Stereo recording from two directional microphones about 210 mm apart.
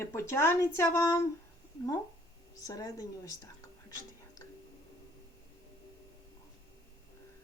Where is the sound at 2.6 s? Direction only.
15° left (ahead or behind).